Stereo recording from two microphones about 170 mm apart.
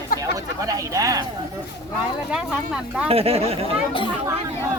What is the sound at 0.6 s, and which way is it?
Speech, 20° right (ahead or behind).